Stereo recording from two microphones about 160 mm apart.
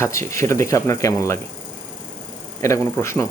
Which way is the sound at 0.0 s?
15° left (ahead or behind).